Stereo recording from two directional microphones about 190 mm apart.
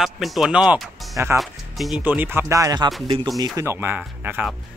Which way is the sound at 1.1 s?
15° right (ahead or behind).